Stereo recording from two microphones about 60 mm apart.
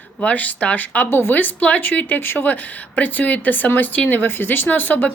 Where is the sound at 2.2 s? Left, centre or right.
Left.